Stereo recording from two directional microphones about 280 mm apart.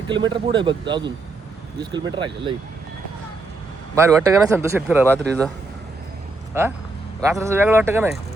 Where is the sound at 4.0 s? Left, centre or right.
Centre.